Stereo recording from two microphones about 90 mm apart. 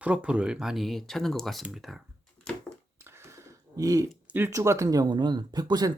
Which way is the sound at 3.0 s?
30° right (ahead or behind).